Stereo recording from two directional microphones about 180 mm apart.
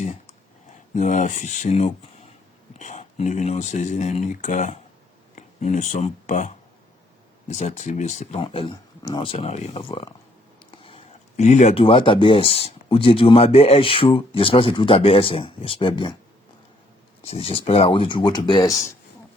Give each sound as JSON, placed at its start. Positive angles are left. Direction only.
{"t": 0.9, "sound": "speech", "side_deg": 40}
{"t": 8.4, "sound": "speech", "side_deg": 30}
{"t": 17.2, "sound": "speech", "side_deg": 30}